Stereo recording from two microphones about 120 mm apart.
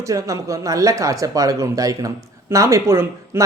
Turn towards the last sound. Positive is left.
turn(degrees=-20)  # may be behind; listen again after turning